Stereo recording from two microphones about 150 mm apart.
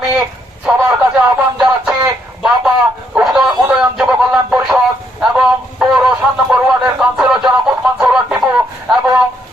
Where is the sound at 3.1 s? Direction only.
Centre (ahead or behind).